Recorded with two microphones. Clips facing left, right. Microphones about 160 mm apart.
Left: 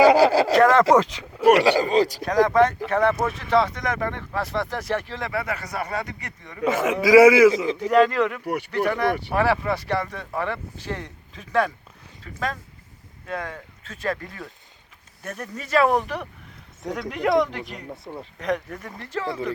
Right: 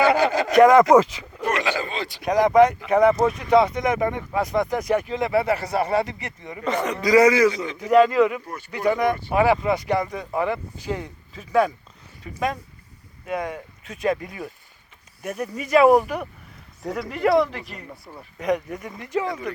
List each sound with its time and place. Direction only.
0.0 s a sound: 35° left (ahead or behind)
0.5 s speech: 15° right (ahead or behind)
1.5 s speech: 35° left (ahead or behind)
2.2 s speech: 20° right (ahead or behind)
6.7 s speech: 5° left (ahead or behind)
7.8 s speech: 10° right (ahead or behind)
8.4 s speech: 70° left (ahead or behind)
8.9 s speech: 15° right (ahead or behind); by 17.9 s centre (ahead or behind)
17.9 s speech: 25° left (ahead or behind)
18.3 s speech: 10° right (ahead or behind)